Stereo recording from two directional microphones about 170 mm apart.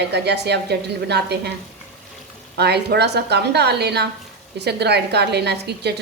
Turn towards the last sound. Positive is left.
turn(degrees=-75)  # may be behind; listen again after turning